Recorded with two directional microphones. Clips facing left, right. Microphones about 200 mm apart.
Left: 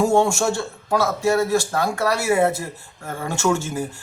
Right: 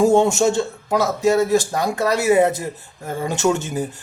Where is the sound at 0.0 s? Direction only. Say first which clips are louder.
Right 3 dB; 20° right (ahead or behind).